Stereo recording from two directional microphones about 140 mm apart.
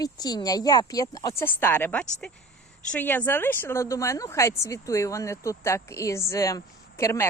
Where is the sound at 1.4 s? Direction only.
15° left (ahead or behind).